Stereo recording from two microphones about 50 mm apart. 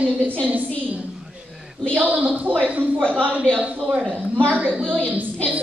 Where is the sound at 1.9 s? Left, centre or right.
Right.